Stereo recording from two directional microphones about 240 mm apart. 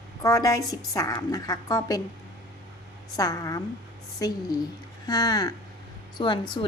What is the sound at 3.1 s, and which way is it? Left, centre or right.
A woman's voice, centre.